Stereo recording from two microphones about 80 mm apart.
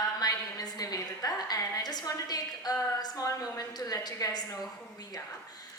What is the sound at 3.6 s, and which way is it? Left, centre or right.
A woman's voice, left.